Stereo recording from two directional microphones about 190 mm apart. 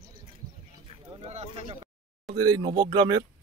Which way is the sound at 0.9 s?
30° right (ahead or behind).